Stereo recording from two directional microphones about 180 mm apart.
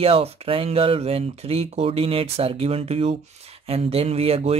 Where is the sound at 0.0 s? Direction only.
30° right (ahead or behind).